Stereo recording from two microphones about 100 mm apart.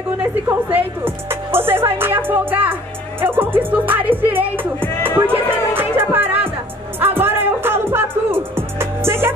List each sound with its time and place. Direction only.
0.5 s speech: 20° right (ahead or behind)
4.2 s music: 20° right (ahead or behind)